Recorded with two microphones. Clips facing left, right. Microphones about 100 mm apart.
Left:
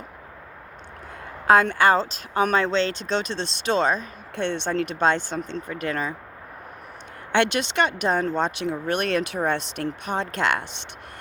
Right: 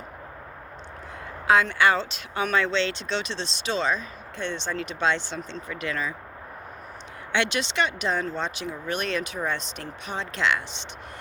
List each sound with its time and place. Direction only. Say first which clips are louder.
1.5 s speech: left 3 dB; 45° left (ahead or behind)
7.3 s speech: left 4 dB; 50° left (ahead or behind)